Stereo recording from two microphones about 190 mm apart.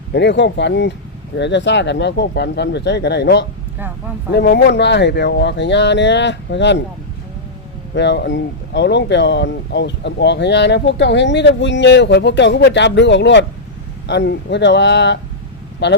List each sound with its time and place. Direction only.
0.1 s speech: 65° left (ahead or behind)
7.9 s speech: 65° left (ahead or behind)